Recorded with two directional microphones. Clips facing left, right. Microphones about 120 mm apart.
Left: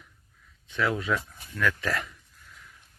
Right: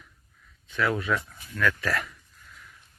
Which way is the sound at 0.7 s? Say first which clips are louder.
Right 1 dB; 20° left (ahead or behind).